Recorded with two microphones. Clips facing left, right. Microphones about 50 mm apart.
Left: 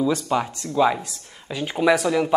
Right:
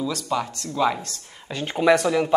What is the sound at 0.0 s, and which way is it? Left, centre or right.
Speech, left.